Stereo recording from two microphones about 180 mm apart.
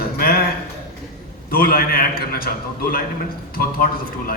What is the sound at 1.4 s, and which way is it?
A man's voice, 55° left (ahead or behind).